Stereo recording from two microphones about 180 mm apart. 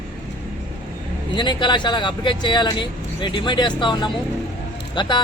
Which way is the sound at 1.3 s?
25° left (ahead or behind).